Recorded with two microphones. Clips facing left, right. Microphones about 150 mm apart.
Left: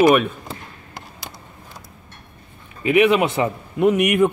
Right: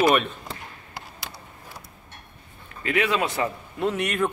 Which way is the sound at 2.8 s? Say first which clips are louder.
Left 8 dB; 20° left (ahead or behind).